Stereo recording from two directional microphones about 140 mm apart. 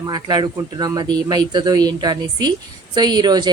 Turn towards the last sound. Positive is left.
turn(degrees=-30)  # may be behind; listen again after turning